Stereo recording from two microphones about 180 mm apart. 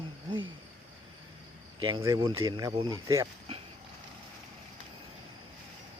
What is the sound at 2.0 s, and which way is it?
Speech, 20° right (ahead or behind).